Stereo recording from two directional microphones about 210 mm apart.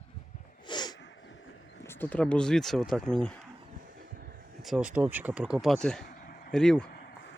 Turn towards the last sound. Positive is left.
turn(degrees=50)  # may be behind; listen again after turning